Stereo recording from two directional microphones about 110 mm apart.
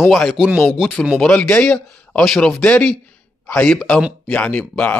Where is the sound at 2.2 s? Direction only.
Centre (ahead or behind).